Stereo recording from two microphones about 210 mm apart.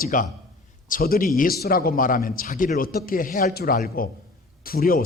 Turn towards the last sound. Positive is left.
turn(degrees=45)  # may be behind; listen again after turning